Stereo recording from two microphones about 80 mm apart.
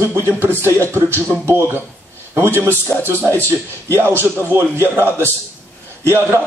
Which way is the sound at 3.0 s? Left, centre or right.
Right.